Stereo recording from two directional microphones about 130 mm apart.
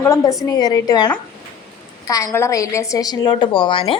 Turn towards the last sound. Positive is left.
turn(degrees=40)  # may be behind; listen again after turning